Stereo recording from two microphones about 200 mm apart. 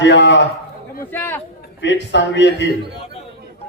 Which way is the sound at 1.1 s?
10° left (ahead or behind).